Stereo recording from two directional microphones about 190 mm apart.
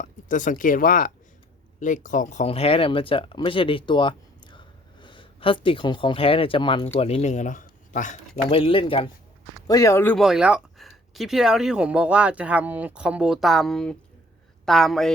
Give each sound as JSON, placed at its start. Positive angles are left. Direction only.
{"t": 0.0, "sound": "speech", "side_deg": 40}
{"t": 8.4, "sound": "speech", "side_deg": 30}
{"t": 9.6, "sound": "speech", "side_deg": 20}
{"t": 10.2, "sound": "speech", "side_deg": -5}